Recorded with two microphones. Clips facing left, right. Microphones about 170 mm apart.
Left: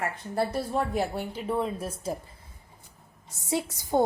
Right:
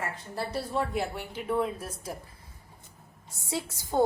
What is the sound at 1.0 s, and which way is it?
A woman's voice, 35° left (ahead or behind).